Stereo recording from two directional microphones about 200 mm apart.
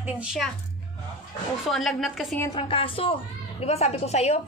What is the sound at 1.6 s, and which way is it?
Speech, centre (ahead or behind).